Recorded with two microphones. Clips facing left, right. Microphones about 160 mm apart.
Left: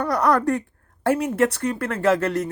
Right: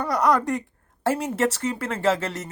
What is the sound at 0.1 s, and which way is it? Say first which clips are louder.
Speech: left 1 dB; 15° right (ahead or behind).